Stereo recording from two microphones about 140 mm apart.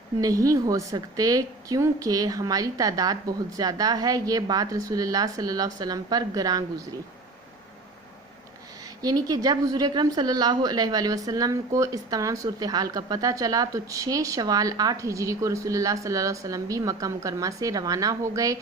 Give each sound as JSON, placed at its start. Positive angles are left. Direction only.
{"t": 0.2, "sound": "a woman's voice", "side_deg": -25}
{"t": 9.0, "sound": "a woman's voice", "side_deg": -25}